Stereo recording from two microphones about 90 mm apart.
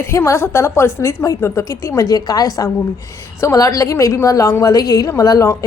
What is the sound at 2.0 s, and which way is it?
A woman's voice, 45° left (ahead or behind).